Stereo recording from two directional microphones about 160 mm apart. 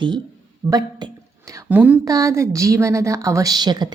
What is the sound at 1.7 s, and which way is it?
Speech, 10° right (ahead or behind).